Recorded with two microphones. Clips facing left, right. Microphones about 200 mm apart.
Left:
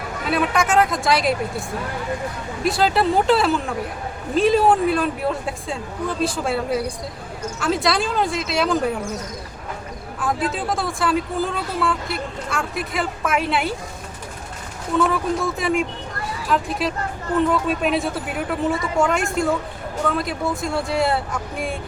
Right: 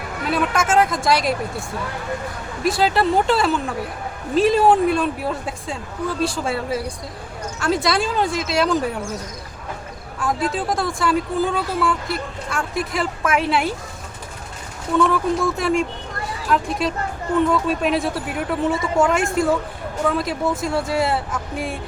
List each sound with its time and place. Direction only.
0.3 s speech: centre (ahead or behind)
2.6 s speech: centre (ahead or behind)
10.2 s speech: centre (ahead or behind)
14.9 s speech: centre (ahead or behind)